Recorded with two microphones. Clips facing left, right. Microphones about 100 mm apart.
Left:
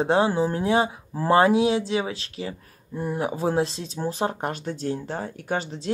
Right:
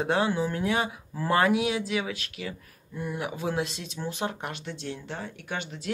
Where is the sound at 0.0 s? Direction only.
30° left (ahead or behind).